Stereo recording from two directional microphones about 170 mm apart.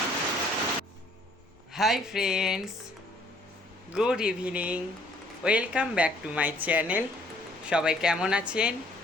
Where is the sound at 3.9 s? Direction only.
5° right (ahead or behind).